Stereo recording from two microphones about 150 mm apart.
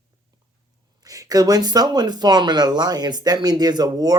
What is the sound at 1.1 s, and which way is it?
Speech, 25° right (ahead or behind).